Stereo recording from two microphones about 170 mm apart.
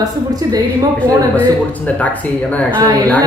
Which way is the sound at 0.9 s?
10° left (ahead or behind).